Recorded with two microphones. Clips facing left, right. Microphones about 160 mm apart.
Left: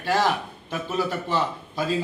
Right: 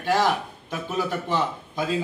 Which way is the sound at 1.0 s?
15° right (ahead or behind).